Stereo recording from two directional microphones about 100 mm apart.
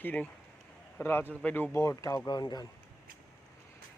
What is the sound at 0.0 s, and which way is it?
A man's voice, 15° left (ahead or behind).